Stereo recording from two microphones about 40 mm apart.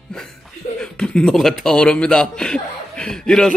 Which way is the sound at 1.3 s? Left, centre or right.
Centre.